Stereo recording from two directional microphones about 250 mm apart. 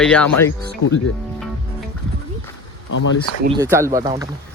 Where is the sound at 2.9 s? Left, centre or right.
Left.